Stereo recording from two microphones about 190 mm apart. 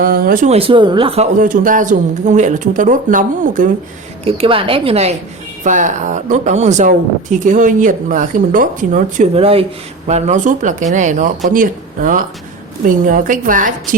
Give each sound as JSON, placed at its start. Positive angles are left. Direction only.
{"t": 0.0, "sound": "a woman's voice", "side_deg": -50}
{"t": 1.4, "sound": "speech", "side_deg": -45}
{"t": 4.2, "sound": "a woman's voice", "side_deg": -30}